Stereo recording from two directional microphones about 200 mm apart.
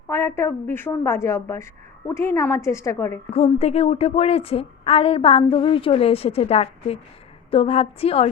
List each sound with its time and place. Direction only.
0.1 s a woman's voice: 15° left (ahead or behind)
3.3 s a woman's voice: 30° left (ahead or behind)